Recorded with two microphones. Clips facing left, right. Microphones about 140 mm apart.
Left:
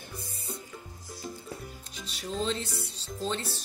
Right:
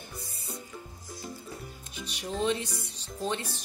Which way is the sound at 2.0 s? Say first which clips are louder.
Right 1 dB; 15° right (ahead or behind).